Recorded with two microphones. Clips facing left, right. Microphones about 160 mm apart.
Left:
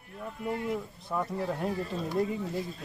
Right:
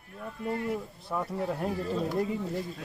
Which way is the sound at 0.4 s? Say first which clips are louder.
Right 1 dB; 15° left (ahead or behind).